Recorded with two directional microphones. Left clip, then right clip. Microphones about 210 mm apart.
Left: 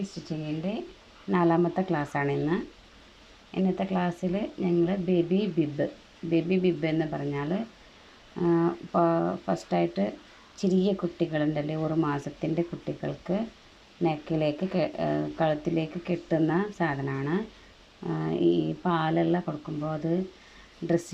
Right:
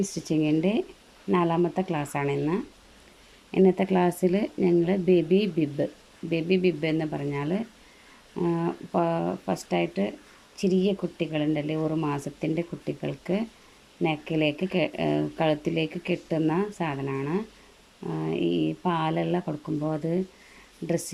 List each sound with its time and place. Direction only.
0.4 s speech: 20° right (ahead or behind)